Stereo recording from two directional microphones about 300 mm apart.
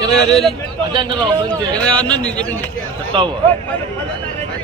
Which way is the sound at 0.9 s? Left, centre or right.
Centre.